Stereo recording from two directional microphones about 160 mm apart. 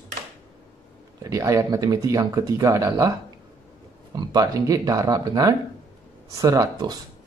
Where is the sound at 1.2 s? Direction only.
20° right (ahead or behind).